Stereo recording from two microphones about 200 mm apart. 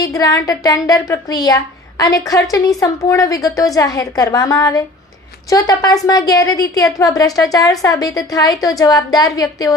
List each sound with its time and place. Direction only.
0.0 s speech: 20° left (ahead or behind)